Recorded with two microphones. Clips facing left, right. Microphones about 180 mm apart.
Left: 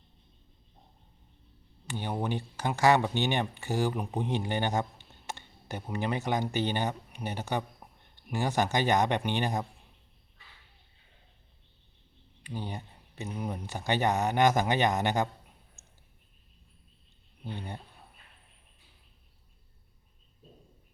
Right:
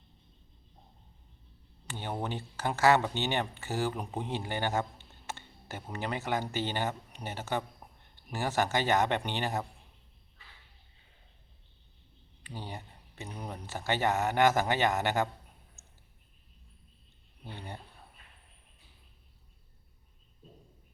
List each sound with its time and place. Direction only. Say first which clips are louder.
1.9 s speech: left 3 dB; 15° left (ahead or behind)
12.4 s a sound: left 4 dB; 15° left (ahead or behind)
13.3 s speech: left 4 dB; 10° left (ahead or behind)